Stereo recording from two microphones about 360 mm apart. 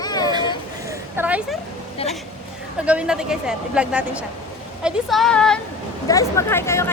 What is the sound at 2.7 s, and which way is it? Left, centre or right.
Speech, centre.